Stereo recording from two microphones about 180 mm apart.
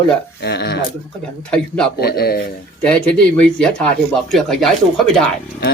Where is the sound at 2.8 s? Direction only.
5° left (ahead or behind).